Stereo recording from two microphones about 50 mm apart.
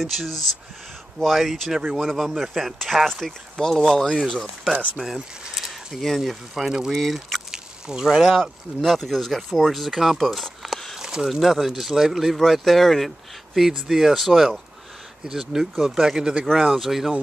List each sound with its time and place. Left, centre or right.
0.0 s speech: centre
6.6 s speech: centre
7.5 s a sound: centre
8.3 s speech: centre
11.0 s a sound: centre
11.2 s speech: centre
16.5 s speech: centre